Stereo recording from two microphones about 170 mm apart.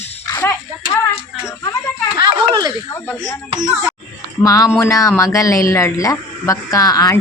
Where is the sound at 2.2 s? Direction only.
25° right (ahead or behind).